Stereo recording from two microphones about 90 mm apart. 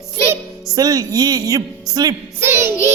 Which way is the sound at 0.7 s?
45° right (ahead or behind).